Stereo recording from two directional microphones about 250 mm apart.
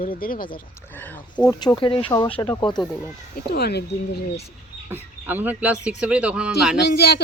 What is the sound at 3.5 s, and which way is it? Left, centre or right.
Speech, left.